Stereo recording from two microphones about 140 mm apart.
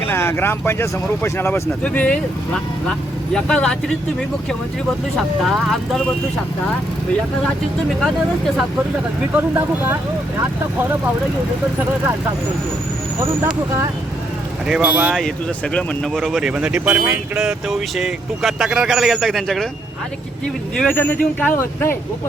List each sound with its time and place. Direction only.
0.1 s speech: 15° left (ahead or behind)
5.4 s speech: centre (ahead or behind)
9.3 s speech: 15° right (ahead or behind)
14.7 s speech: 10° right (ahead or behind)
16.1 s speech: 5° right (ahead or behind)
20.9 s speech: 15° left (ahead or behind)